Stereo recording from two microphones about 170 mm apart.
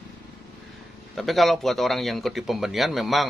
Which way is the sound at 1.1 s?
Centre (ahead or behind).